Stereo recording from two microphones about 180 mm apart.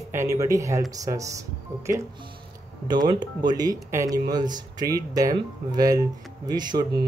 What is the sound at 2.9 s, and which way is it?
Speech, 25° right (ahead or behind).